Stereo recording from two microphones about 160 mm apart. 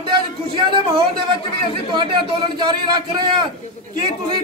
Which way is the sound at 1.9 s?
30° right (ahead or behind).